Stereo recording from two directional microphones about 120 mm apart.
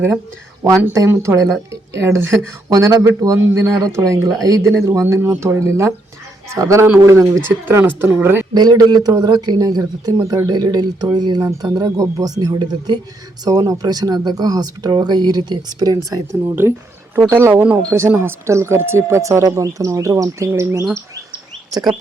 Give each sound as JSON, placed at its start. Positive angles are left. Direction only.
{"t": 0.9, "sound": "speech", "side_deg": -20}
{"t": 8.5, "sound": "speech", "side_deg": -35}